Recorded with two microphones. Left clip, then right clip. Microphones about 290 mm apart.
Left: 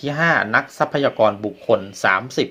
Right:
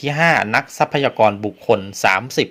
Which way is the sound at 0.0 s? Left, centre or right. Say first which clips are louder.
Right 2 dB; right.